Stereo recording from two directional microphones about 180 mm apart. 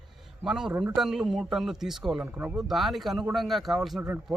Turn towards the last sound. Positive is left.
turn(degrees=0)  # may be behind; listen again after turning